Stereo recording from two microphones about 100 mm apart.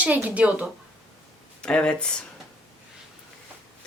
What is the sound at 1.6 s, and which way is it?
Speech, 10° left (ahead or behind).